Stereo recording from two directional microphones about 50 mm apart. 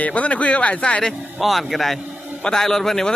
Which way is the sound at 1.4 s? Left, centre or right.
Centre.